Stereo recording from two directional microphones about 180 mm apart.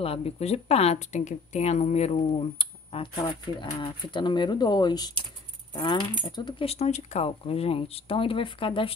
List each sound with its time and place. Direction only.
0.0 s speech: 35° left (ahead or behind)